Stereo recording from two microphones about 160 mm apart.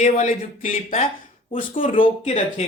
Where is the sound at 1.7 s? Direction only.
35° left (ahead or behind).